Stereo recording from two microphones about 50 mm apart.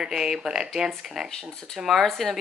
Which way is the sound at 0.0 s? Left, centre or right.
Centre.